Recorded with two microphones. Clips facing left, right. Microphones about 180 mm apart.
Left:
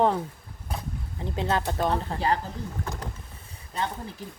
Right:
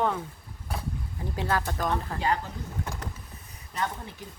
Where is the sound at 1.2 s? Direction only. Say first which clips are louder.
Left 2 dB; 25° left (ahead or behind).